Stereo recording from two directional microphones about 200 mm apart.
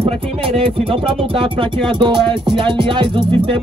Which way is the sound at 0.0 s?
30° right (ahead or behind).